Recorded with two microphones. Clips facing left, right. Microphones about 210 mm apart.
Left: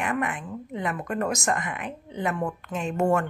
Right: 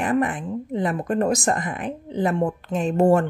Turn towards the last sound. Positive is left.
turn(degrees=-30)  # may be behind; listen again after turning